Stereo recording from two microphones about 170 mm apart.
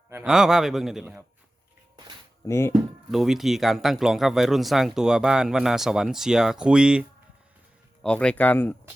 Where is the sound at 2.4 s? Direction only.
15° left (ahead or behind).